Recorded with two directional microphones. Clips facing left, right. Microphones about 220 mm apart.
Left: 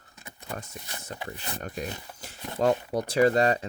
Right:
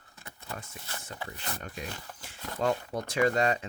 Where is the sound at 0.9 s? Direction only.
15° left (ahead or behind).